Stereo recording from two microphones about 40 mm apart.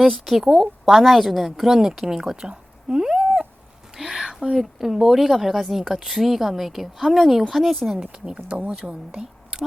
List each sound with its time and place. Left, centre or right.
0.0 s a woman's voice: centre
7.9 s speech: right